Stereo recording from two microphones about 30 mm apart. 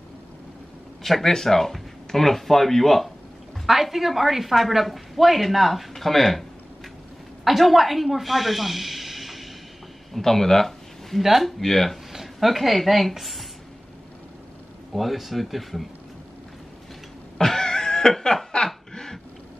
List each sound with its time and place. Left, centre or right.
1.0 s speech: centre
3.6 s a woman's voice: centre
7.4 s speech: centre
10.1 s speech: centre
12.1 s a sound: centre
12.4 s a woman's voice: centre
13.2 s a sound: centre
14.9 s a woman's voice: centre
17.4 s a sound: centre